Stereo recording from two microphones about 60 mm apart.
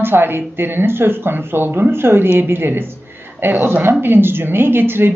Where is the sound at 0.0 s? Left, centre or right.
Right.